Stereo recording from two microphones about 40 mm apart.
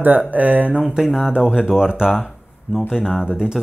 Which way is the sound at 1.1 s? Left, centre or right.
Centre.